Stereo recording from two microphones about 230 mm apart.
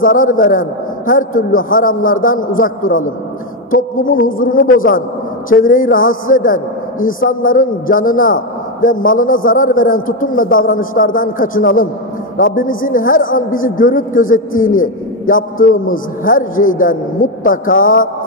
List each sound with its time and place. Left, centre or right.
0.0 s speech: left